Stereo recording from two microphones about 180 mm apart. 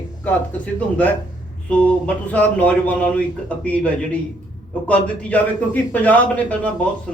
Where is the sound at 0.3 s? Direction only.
10° left (ahead or behind).